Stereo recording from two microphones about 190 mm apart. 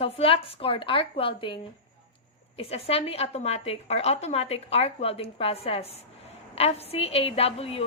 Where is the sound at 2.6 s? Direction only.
30° left (ahead or behind).